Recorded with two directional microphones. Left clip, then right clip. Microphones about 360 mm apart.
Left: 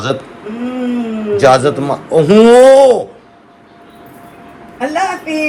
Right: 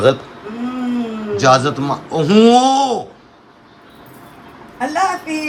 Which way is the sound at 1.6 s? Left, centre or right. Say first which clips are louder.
Left 5 dB; centre.